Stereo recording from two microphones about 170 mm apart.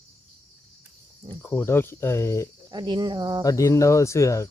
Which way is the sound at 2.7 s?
25° right (ahead or behind).